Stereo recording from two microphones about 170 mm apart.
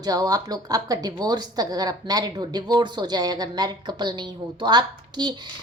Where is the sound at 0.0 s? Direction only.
20° right (ahead or behind).